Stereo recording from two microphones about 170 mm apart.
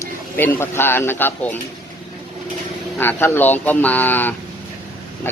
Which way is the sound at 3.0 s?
10° left (ahead or behind).